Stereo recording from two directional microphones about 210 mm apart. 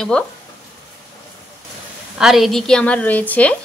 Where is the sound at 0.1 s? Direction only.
5° left (ahead or behind).